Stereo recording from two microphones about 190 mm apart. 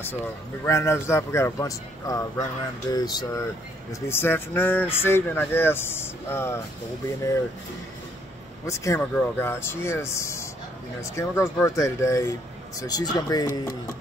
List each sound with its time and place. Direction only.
0.7 s speech: 15° left (ahead or behind)
8.6 s speech: 15° left (ahead or behind)